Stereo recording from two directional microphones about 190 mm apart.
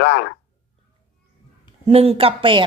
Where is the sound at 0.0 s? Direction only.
65° left (ahead or behind).